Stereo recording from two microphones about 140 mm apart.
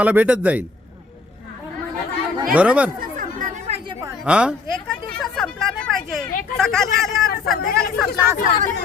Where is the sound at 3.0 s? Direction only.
70° right (ahead or behind).